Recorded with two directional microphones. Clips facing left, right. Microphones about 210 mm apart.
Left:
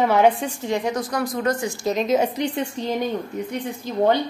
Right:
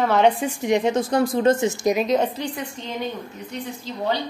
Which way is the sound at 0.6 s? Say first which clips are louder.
Right 4 dB; 20° right (ahead or behind).